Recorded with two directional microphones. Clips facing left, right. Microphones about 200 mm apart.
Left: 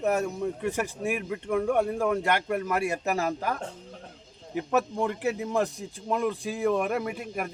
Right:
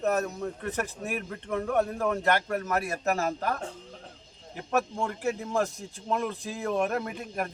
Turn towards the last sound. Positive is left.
turn(degrees=10)  # may be behind; listen again after turning